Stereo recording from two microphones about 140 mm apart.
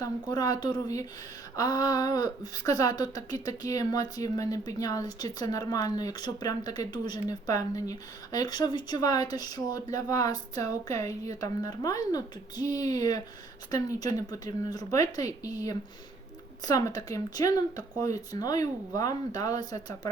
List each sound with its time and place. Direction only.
0.0 s speech: 30° left (ahead or behind)